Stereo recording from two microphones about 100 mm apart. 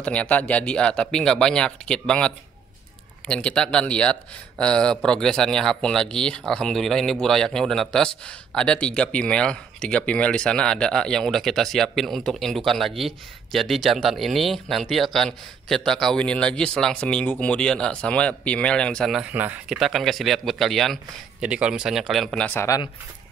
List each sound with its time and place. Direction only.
0.0 s speech: 10° left (ahead or behind)
19.3 s speech: 15° right (ahead or behind)
19.8 s a man's voice: centre (ahead or behind)